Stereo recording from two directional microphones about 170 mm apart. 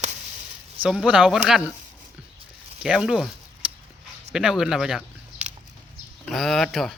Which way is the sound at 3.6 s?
5° right (ahead or behind).